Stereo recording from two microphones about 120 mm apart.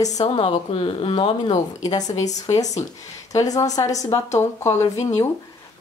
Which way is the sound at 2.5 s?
70° left (ahead or behind).